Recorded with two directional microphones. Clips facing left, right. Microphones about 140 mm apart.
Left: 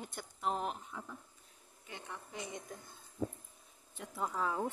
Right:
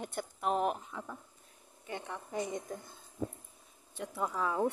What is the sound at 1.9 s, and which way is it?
Speech, 50° right (ahead or behind).